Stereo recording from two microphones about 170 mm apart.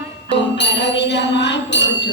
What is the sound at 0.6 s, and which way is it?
Music, 90° left.